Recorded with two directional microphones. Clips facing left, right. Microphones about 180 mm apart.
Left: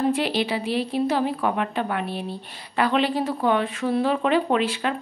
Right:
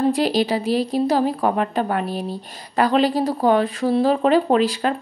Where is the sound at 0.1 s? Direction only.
40° right (ahead or behind).